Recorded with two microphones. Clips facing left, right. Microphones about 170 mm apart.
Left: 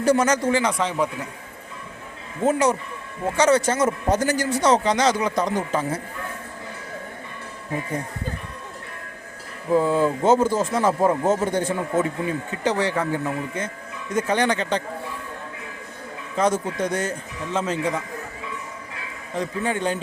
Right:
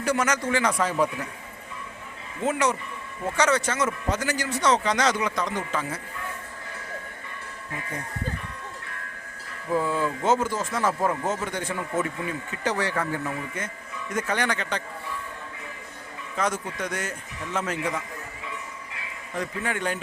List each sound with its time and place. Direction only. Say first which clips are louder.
0.0 s speech: left 6 dB; 35° left (ahead or behind)
0.8 s a man's voice: left 1 dB; 15° left (ahead or behind)
2.5 s speech: left 5 dB; 35° left (ahead or behind)
9.7 s speech: left 6 dB; 25° left (ahead or behind)
11.2 s speech: left 8 dB; 35° left (ahead or behind)
16.3 s speech: left 6 dB; 25° left (ahead or behind)
19.4 s speech: left 5 dB; 25° left (ahead or behind)